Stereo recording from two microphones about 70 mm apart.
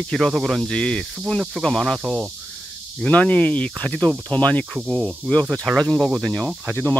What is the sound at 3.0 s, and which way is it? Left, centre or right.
Speech, centre.